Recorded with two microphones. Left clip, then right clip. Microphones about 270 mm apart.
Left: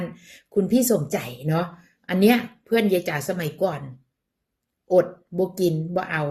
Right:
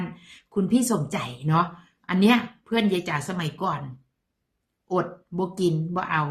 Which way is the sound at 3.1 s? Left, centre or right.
Centre.